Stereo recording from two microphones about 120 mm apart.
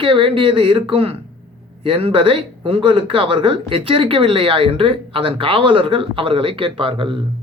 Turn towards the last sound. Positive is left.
turn(degrees=-45)  # may be behind; listen again after turning